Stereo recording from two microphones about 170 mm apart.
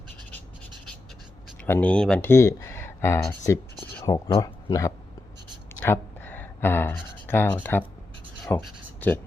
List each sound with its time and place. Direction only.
1.6 s speech: 10° left (ahead or behind)
5.8 s a sound: 10° left (ahead or behind)
8.4 s speech: 10° left (ahead or behind)